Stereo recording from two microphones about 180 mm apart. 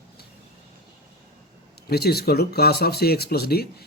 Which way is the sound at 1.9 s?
60° left (ahead or behind).